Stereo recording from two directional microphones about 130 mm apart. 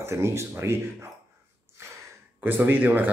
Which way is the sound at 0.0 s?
20° right (ahead or behind).